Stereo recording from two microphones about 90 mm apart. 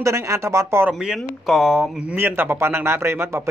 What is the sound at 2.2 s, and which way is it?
A man's voice, 25° right (ahead or behind).